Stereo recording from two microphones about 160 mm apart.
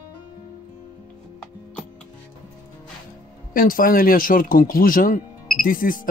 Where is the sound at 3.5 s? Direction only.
60° left (ahead or behind).